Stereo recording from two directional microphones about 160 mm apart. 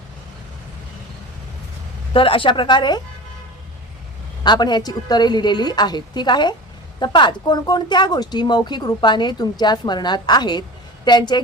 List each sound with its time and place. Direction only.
2.1 s speech: 35° left (ahead or behind)
4.4 s a woman's voice: 25° left (ahead or behind)